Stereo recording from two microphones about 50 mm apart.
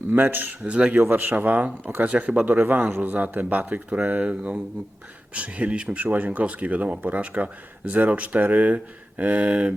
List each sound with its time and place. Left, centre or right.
0.1 s speech: right
0.6 s speech: right
2.5 s speech: right